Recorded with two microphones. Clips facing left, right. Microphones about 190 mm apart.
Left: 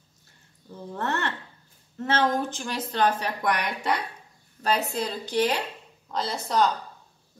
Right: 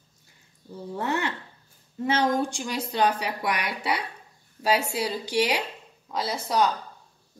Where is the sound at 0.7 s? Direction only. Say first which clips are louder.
Right 1 dB; 10° right (ahead or behind).